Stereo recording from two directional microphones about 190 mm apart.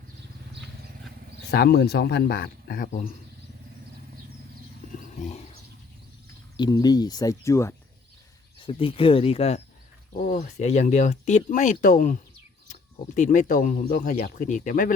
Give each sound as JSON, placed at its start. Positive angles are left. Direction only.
{"t": 1.5, "sound": "speech", "side_deg": 60}
{"t": 4.9, "sound": "wild animals", "side_deg": 40}
{"t": 6.6, "sound": "speech", "side_deg": 20}
{"t": 8.6, "sound": "speech", "side_deg": 30}
{"t": 13.1, "sound": "speech", "side_deg": 40}